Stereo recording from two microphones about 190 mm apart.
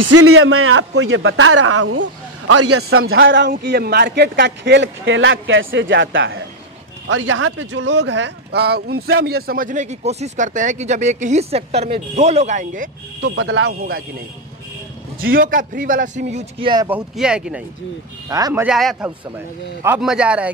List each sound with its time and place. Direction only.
0.3 s a man's voice: 90° right
7.1 s speech: 90° right; by 12.9 s 40° right (ahead or behind)
13.2 s speech: 70° right (ahead or behind)
15.1 s speech: 50° right (ahead or behind); by 16.8 s 25° right (ahead or behind)
16.8 s speech: 5° right (ahead or behind)
18.8 s speech: centre (ahead or behind)